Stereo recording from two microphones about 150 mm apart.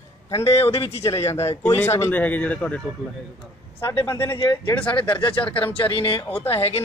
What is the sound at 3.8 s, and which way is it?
Speech, 20° left (ahead or behind).